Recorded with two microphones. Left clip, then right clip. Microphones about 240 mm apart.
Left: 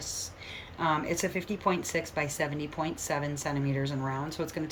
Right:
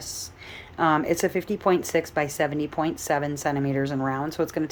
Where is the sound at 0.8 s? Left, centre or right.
Centre.